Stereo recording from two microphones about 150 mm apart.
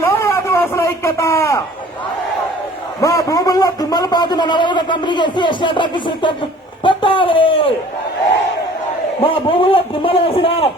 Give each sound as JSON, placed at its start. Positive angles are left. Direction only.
{"t": 0.0, "sound": "a sound", "side_deg": 15}
{"t": 3.0, "sound": "a man's voice", "side_deg": 20}
{"t": 9.2, "sound": "a man's voice", "side_deg": 35}